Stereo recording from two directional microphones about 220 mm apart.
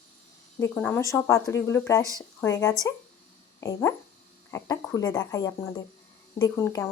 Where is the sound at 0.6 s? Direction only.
10° left (ahead or behind).